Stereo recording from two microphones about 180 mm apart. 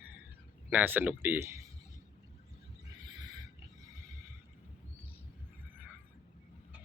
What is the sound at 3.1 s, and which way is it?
Wild animals, 20° right (ahead or behind).